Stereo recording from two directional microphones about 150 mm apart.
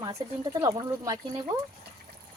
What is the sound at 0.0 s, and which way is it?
Speech, 25° right (ahead or behind).